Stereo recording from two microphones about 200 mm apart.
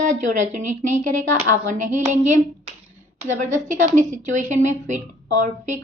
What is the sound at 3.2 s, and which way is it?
A woman's voice, 40° right (ahead or behind).